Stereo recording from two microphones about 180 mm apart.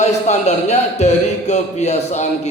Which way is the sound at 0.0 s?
40° left (ahead or behind).